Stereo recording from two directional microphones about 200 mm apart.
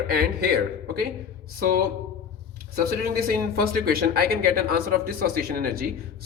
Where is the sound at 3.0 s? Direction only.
50° right (ahead or behind).